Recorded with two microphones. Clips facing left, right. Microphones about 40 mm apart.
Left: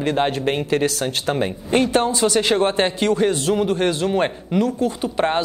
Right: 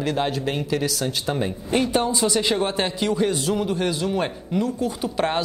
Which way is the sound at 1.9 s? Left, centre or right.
Left.